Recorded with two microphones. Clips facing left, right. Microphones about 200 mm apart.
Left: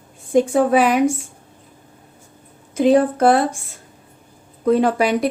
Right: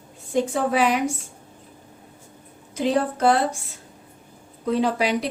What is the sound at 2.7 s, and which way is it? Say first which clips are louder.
Speech: left 8 dB; 55° left (ahead or behind).